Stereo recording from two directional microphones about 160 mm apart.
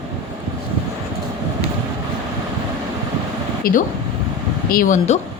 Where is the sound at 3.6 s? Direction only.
65° left (ahead or behind); by 5.2 s 45° left (ahead or behind).